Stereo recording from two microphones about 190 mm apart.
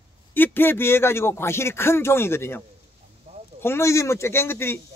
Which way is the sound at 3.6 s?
15° left (ahead or behind).